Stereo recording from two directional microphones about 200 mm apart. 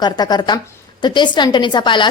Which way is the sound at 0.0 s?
20° left (ahead or behind).